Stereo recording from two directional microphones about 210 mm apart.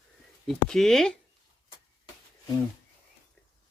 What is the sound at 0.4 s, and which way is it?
Speech, centre (ahead or behind).